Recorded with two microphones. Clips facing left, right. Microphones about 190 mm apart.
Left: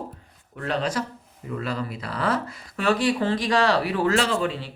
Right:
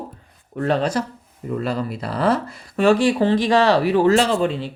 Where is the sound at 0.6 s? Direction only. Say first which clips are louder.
Right 6 dB; 40° right (ahead or behind).